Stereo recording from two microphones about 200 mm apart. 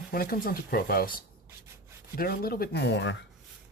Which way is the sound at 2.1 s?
50° left (ahead or behind).